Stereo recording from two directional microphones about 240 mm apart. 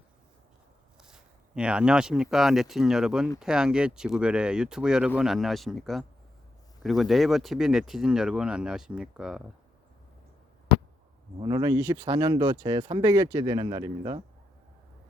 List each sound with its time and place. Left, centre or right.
1.0 s speech: centre
11.3 s speech: centre